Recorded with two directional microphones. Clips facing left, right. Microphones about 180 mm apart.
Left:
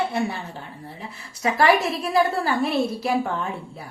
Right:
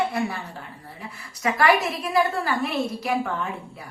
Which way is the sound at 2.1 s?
30° left (ahead or behind).